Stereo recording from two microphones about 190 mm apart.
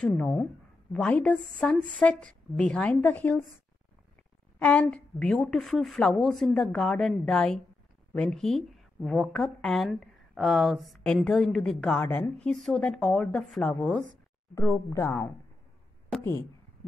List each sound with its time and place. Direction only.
0.0 s a woman's voice: 5° left (ahead or behind)
4.6 s a woman's voice: 5° left (ahead or behind)
14.5 s a woman's voice: 15° left (ahead or behind)